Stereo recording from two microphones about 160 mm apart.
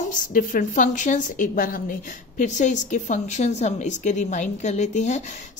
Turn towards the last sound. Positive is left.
turn(degrees=45)  # may be behind; listen again after turning